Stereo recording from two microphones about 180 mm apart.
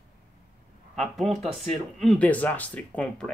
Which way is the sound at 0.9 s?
Centre (ahead or behind).